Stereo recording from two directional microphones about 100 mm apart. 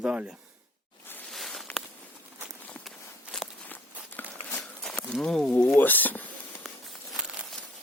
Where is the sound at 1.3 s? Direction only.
Centre (ahead or behind).